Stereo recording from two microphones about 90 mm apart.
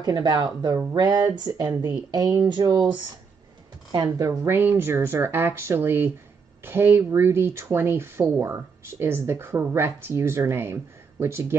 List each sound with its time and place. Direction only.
0.0 s speech: 50° right (ahead or behind)
4.5 s speech: 25° right (ahead or behind)